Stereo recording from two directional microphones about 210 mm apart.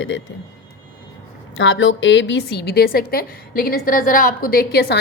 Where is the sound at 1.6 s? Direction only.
65° left (ahead or behind); by 5.0 s 50° left (ahead or behind).